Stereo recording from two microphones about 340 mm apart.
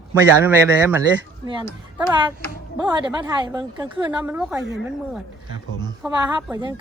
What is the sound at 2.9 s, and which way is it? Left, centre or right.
A woman's voice, centre.